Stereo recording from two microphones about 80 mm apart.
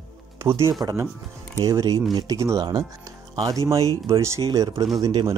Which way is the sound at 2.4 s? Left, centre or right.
Right.